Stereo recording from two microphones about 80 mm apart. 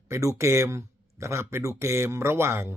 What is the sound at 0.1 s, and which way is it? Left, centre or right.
Speech, right.